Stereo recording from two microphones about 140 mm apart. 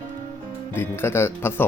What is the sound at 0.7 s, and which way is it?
Speech, 15° left (ahead or behind).